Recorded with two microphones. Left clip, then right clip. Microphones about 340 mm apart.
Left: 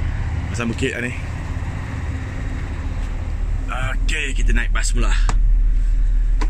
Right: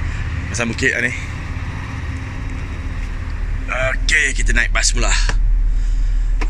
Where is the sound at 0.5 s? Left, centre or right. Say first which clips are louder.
Right 6 dB; centre.